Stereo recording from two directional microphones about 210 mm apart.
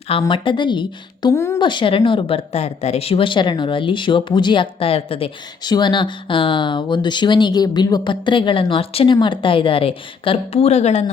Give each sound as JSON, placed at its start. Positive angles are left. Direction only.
{"t": 0.1, "sound": "a woman's voice", "side_deg": 25}